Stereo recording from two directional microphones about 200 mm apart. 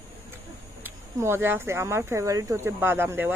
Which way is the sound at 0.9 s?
10° right (ahead or behind).